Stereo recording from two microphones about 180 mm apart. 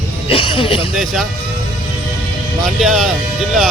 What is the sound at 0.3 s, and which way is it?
Speech, 30° left (ahead or behind).